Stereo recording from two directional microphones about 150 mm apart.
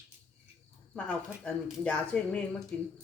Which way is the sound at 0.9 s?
5° left (ahead or behind).